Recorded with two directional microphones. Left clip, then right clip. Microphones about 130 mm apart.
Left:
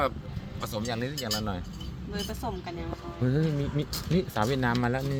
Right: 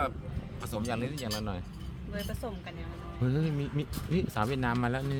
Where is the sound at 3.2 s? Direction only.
Centre (ahead or behind).